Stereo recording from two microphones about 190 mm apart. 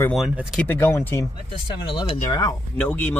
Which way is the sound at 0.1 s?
Centre (ahead or behind).